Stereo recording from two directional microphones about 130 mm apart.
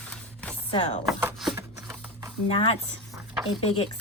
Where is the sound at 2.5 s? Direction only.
50° left (ahead or behind).